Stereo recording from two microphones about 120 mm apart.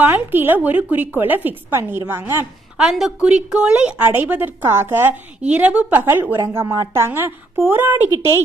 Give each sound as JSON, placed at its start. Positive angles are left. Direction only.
{"t": 0.0, "sound": "a woman's voice", "side_deg": -15}
{"t": 2.7, "sound": "a woman's voice", "side_deg": -5}